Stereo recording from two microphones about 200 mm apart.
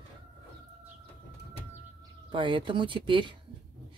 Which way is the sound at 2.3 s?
25° right (ahead or behind).